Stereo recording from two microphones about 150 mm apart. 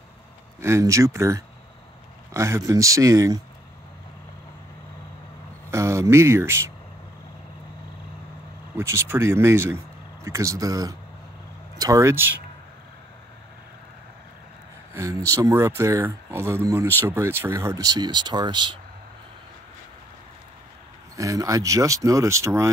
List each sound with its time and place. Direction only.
0.6 s speech: 20° right (ahead or behind)
5.7 s speech: 20° right (ahead or behind)
8.7 s speech: 15° right (ahead or behind)
15.0 s speech: 20° right (ahead or behind)
21.2 s speech: 20° right (ahead or behind)